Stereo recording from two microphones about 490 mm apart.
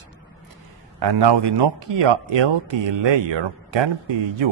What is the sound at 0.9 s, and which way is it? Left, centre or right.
Speech, right.